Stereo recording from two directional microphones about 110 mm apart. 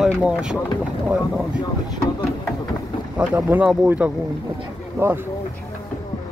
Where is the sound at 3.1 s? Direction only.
15° right (ahead or behind).